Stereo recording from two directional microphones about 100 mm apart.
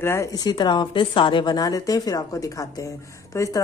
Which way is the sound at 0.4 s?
45° left (ahead or behind).